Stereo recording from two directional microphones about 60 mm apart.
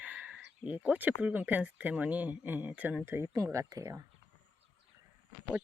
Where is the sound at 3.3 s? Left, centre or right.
Right.